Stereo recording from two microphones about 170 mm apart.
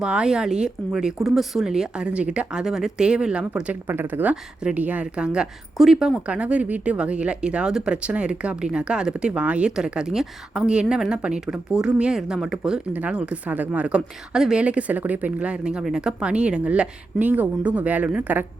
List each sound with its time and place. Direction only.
0.0 s speech: 5° right (ahead or behind)